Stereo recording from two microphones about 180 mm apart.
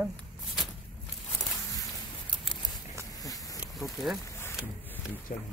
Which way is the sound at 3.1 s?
20° left (ahead or behind).